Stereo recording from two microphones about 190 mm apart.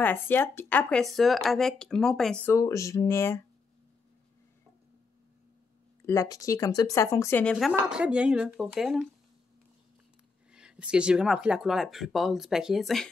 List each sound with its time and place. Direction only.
0.0 s speech: 10° left (ahead or behind)
6.0 s speech: 20° left (ahead or behind)
7.7 s speech: 5° right (ahead or behind)
10.5 s speech: 5° right (ahead or behind)